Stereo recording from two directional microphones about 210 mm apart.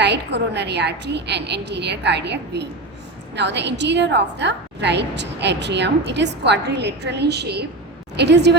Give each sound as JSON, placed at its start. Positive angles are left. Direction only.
{"t": 0.0, "sound": "a woman's voice", "side_deg": -55}